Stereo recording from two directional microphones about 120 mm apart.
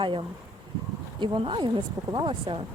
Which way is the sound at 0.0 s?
45° right (ahead or behind).